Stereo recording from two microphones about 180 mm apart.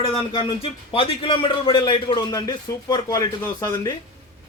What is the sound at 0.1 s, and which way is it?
A man's voice, 30° left (ahead or behind).